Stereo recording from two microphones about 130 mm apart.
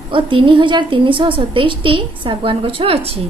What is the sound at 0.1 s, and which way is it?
A woman's voice, 40° right (ahead or behind).